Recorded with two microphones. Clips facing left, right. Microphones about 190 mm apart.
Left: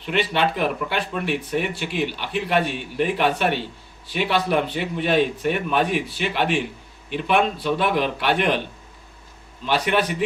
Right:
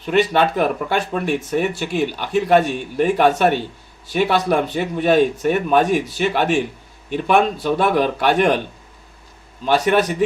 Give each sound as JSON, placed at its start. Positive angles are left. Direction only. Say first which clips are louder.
{"t": 0.0, "sound": "a man's voice", "louder": "right 5 dB", "side_deg": -45}
{"t": 9.6, "sound": "a man's voice", "louder": "right 5 dB", "side_deg": -45}